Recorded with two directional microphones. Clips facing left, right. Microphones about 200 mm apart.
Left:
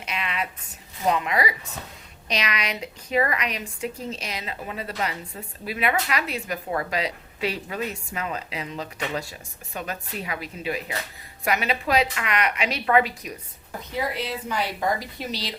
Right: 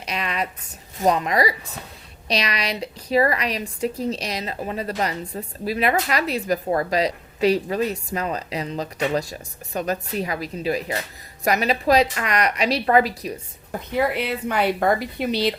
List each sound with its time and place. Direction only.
0.0 s a sound: 40° right (ahead or behind)
0.9 s a woman's voice: 40° right (ahead or behind)
13.7 s a woman's voice: 60° right (ahead or behind)